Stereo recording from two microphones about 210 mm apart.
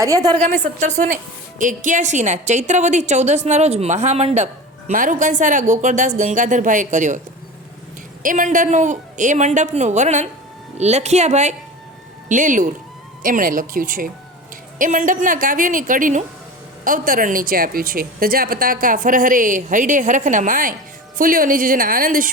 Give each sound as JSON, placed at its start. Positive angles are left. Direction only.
{"t": 0.0, "sound": "a woman's voice", "side_deg": -15}
{"t": 0.6, "sound": "speech", "side_deg": -35}
{"t": 8.2, "sound": "speech", "side_deg": -40}